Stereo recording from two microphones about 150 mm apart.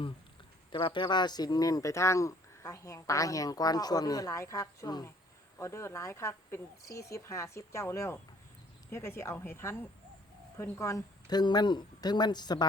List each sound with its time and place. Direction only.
0.7 s speech: 30° left (ahead or behind)